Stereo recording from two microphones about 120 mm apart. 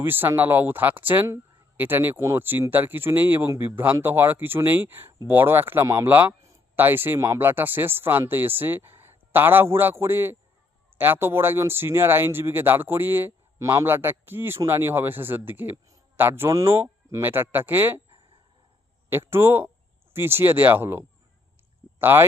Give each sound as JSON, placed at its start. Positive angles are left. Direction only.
{"t": 0.0, "sound": "speech", "side_deg": -15}
{"t": 19.1, "sound": "speech", "side_deg": -20}